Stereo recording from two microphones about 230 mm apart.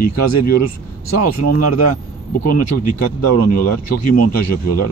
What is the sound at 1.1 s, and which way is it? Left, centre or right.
Speech, left.